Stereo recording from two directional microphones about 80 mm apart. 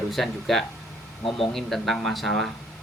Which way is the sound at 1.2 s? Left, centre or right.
Left.